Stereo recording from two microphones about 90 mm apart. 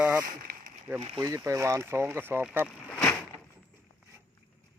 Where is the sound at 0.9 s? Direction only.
25° right (ahead or behind).